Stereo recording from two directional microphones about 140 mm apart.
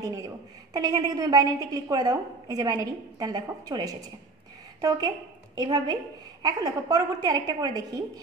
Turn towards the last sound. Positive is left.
turn(degrees=-25)  # may be behind; listen again after turning